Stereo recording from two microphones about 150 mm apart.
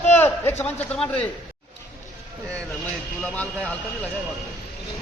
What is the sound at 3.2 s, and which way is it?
Speech, 10° left (ahead or behind).